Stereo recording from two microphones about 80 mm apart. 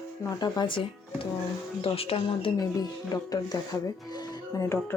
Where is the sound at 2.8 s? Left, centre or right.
Left.